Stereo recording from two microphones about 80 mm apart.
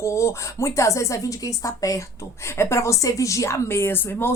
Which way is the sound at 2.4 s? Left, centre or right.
Left.